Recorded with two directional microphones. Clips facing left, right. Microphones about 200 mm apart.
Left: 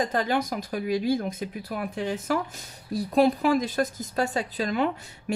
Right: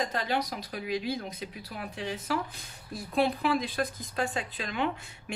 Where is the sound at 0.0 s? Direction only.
50° left (ahead or behind).